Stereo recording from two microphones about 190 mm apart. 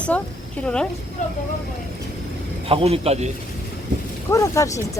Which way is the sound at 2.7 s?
30° right (ahead or behind).